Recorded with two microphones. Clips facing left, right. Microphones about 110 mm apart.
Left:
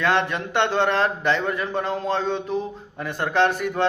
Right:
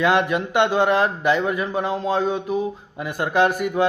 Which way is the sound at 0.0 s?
10° right (ahead or behind).